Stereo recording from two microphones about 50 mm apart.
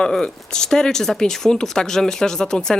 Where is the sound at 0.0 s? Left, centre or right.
Centre.